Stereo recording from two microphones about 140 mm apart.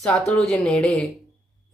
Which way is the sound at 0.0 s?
5° left (ahead or behind).